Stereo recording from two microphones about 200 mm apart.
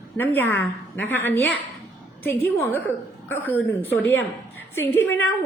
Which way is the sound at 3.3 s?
10° left (ahead or behind).